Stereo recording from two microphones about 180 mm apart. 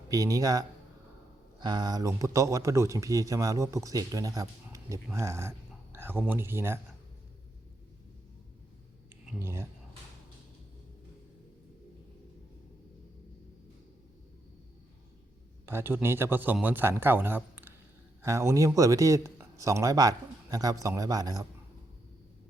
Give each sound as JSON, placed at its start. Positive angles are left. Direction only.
{"t": 0.1, "sound": "a man's voice", "side_deg": -20}
{"t": 1.6, "sound": "speech", "side_deg": -25}
{"t": 9.2, "sound": "speech", "side_deg": -15}
{"t": 15.6, "sound": "speech", "side_deg": -10}